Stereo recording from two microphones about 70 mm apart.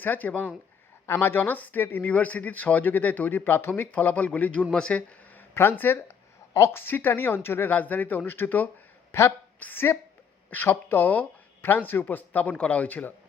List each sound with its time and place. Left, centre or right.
0.0 s speech: left
1.0 s speech: left; by 5.1 s centre
5.5 s speech: left